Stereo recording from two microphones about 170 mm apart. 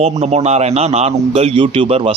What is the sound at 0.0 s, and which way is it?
A man's voice, 40° right (ahead or behind).